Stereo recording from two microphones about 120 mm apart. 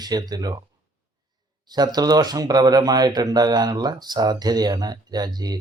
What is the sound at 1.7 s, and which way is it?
Speech, 35° right (ahead or behind).